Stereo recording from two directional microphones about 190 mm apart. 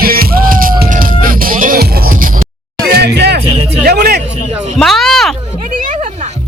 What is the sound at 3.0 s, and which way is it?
Music, 60° right (ahead or behind).